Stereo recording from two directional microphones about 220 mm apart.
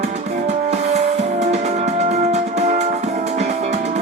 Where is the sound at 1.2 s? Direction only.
30° right (ahead or behind).